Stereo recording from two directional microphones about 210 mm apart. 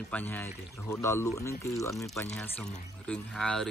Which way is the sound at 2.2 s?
5° left (ahead or behind).